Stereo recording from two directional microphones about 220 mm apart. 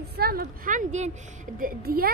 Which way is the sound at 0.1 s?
45° right (ahead or behind).